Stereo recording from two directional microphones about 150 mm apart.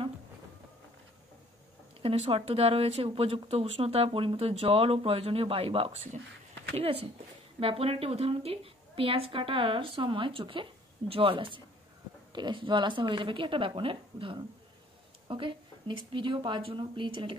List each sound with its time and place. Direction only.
2.0 s a woman's voice: 40° right (ahead or behind)